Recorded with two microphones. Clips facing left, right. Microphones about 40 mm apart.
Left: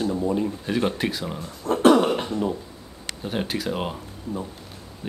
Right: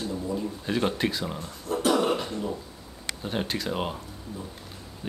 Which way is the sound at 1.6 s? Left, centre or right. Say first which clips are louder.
Left 8 dB; left.